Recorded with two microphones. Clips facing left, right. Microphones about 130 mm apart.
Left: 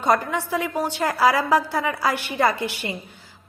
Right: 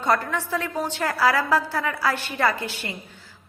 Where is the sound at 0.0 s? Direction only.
15° left (ahead or behind).